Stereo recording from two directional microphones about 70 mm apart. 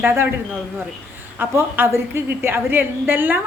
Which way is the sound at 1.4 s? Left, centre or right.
Right.